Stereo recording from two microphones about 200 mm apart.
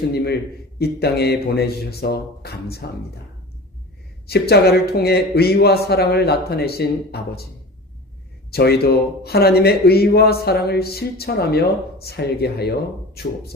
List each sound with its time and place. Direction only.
0.8 s a man's voice: 50° left (ahead or behind)
4.3 s a man's voice: 50° left (ahead or behind)
8.4 s a man's voice: 50° left (ahead or behind)